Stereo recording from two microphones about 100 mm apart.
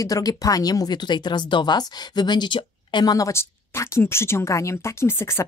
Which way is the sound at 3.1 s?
30° left (ahead or behind).